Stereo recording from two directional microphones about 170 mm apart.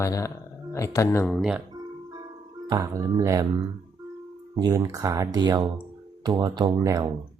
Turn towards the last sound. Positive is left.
turn(degrees=-25)  # may be behind; listen again after turning